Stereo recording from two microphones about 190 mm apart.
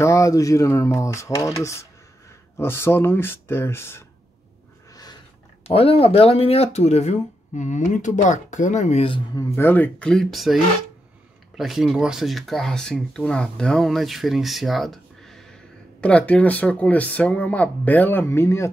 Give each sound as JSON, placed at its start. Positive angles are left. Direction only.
{"t": 0.0, "sound": "speech", "side_deg": 15}
{"t": 5.7, "sound": "speech", "side_deg": 30}
{"t": 9.4, "sound": "speech", "side_deg": 10}